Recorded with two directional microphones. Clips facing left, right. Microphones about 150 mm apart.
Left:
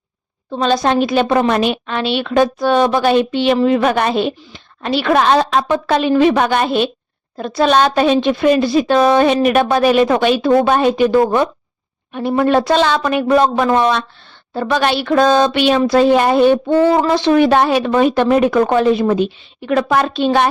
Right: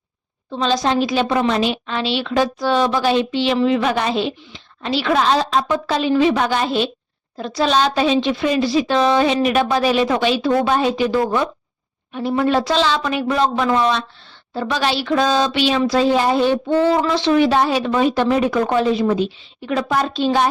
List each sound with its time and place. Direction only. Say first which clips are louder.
0.5 s a woman's voice: left 3 dB; 55° left (ahead or behind)